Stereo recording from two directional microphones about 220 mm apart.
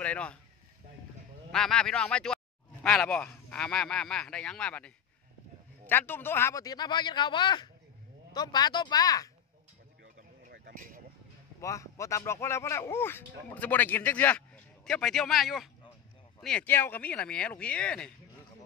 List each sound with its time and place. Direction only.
0.0 s speech: 5° left (ahead or behind)
1.5 s speech: 5° left (ahead or behind)
10.5 s a sound: 45° right (ahead or behind)
11.6 s speech: 15° left (ahead or behind)